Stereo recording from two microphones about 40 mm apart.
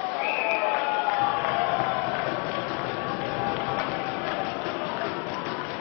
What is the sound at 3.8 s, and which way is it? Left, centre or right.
Music, centre.